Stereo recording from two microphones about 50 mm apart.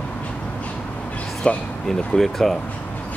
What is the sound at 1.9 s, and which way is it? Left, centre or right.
Speech, centre.